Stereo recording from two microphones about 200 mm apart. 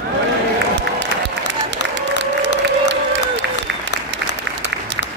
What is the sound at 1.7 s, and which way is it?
Crowd, 65° right (ahead or behind).